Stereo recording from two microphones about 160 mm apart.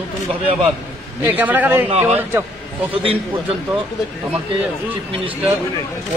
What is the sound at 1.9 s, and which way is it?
Speech, 40° right (ahead or behind).